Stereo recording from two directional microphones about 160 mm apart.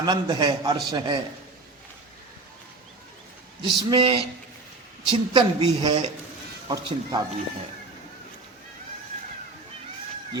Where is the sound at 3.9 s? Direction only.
35° right (ahead or behind).